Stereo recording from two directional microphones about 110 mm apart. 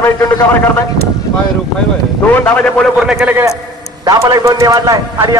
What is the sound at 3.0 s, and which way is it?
Speech, 5° right (ahead or behind).